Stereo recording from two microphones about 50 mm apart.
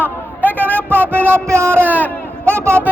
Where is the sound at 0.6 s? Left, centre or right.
Right.